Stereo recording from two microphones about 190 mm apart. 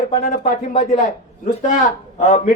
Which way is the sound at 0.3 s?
40° left (ahead or behind).